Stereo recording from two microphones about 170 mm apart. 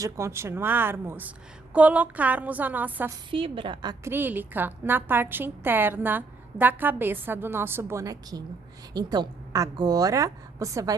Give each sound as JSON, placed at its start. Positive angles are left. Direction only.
{"t": 0.0, "sound": "a woman's voice", "side_deg": -15}
{"t": 3.3, "sound": "a woman's voice", "side_deg": -30}
{"t": 4.1, "sound": "a woman's voice", "side_deg": -10}